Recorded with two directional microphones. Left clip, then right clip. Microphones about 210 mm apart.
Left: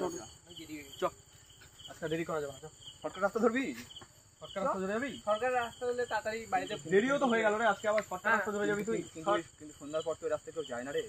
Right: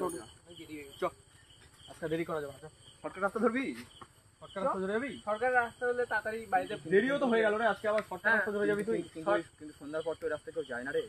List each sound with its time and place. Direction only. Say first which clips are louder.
1.0 s speech: left 1 dB; 10° right (ahead or behind)
8.5 s speech: right 2 dB; 20° right (ahead or behind)
9.1 s speech: right 1 dB; 5° right (ahead or behind)